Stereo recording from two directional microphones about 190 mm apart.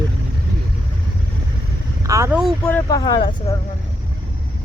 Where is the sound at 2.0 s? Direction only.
15° right (ahead or behind).